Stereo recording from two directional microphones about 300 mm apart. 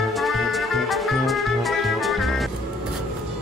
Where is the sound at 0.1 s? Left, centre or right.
Centre.